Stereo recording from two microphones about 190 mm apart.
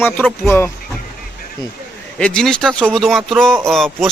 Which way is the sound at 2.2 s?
5° left (ahead or behind).